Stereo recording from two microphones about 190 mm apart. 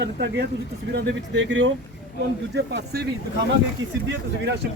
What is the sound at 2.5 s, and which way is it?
Speech, 60° right (ahead or behind).